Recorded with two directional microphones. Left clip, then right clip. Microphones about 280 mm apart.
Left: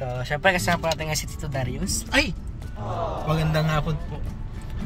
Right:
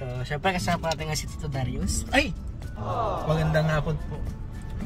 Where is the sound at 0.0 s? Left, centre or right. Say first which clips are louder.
Left 6 dB; centre.